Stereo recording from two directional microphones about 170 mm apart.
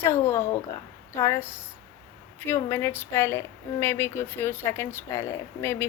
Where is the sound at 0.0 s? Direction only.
15° left (ahead or behind).